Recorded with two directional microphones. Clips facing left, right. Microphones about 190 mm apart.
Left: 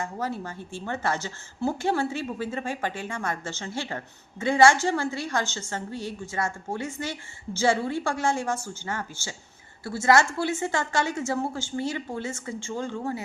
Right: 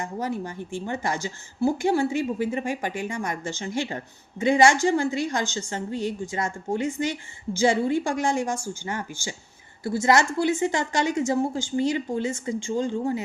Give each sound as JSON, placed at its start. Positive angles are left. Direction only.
{"t": 0.0, "sound": "a woman's voice", "side_deg": -15}